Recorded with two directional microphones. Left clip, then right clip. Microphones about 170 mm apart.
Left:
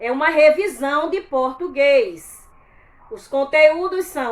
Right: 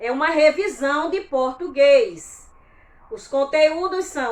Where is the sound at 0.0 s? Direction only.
25° left (ahead or behind).